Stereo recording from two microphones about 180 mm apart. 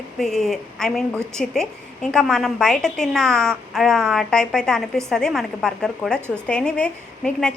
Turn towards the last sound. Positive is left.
turn(degrees=5)  # may be behind; listen again after turning